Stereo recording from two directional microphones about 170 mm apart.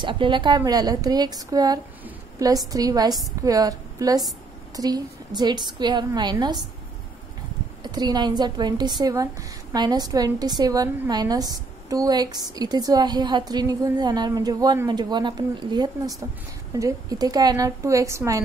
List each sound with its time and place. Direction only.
0.0 s a woman's voice: 30° right (ahead or behind)
7.8 s a woman's voice: 25° right (ahead or behind)